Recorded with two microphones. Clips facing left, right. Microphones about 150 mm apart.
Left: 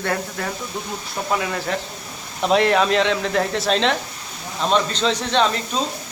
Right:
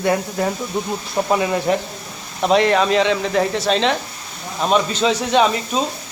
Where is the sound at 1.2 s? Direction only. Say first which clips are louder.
Right 5 dB; 25° right (ahead or behind).